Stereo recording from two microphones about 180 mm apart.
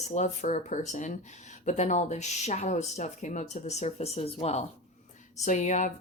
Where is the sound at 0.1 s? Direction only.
40° left (ahead or behind).